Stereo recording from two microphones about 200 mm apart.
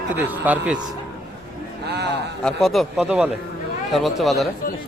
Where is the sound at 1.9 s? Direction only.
55° right (ahead or behind).